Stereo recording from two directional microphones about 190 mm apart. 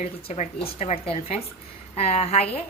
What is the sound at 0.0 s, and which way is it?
A woman's voice, 35° left (ahead or behind).